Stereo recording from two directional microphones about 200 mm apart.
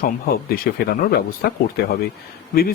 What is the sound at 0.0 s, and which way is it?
Speech, 45° left (ahead or behind).